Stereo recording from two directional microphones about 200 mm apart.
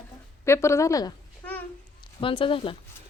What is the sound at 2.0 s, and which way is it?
Speech, 25° left (ahead or behind).